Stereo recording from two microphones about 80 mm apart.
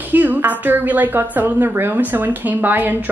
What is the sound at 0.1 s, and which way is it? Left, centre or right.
A woman's voice, right.